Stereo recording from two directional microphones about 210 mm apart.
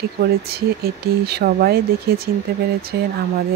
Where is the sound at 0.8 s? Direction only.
50° right (ahead or behind).